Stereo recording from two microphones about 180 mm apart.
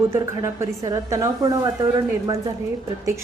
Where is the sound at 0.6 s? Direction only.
15° right (ahead or behind).